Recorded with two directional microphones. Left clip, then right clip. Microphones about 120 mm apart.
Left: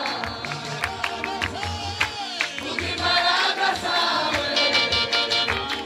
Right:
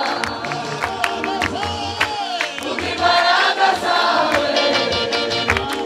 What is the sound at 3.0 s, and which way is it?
Music, 20° left (ahead or behind).